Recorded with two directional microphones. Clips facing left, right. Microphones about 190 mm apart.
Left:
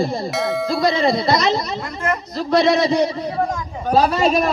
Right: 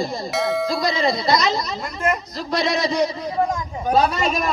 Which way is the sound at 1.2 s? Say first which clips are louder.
Left 2 dB; 30° left (ahead or behind).